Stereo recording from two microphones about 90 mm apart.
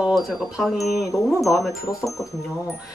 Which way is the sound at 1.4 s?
Centre (ahead or behind).